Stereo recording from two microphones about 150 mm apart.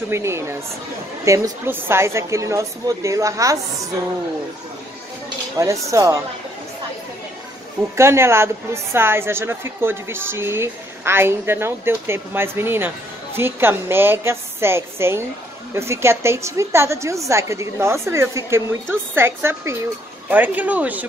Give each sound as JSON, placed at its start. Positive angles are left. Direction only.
{"t": 0.1, "sound": "a woman's voice", "side_deg": -20}
{"t": 5.6, "sound": "a woman's voice", "side_deg": -20}
{"t": 7.9, "sound": "a woman's voice", "side_deg": -15}